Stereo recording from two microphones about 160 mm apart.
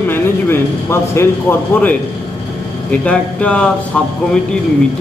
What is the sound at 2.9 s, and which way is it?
Speech, 5° left (ahead or behind).